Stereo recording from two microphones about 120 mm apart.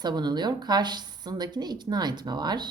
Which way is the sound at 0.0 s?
35° right (ahead or behind).